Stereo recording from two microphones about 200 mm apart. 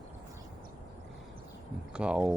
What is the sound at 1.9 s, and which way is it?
Speech, 5° right (ahead or behind).